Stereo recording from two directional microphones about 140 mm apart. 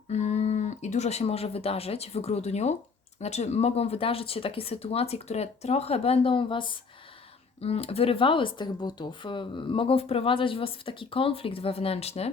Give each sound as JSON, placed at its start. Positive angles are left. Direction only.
{"t": 0.1, "sound": "speech", "side_deg": 55}